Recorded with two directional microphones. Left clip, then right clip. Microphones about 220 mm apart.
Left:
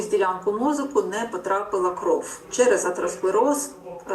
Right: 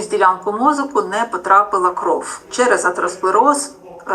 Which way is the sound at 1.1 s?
15° right (ahead or behind).